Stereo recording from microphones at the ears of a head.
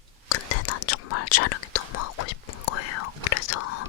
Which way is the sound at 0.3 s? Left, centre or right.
Left.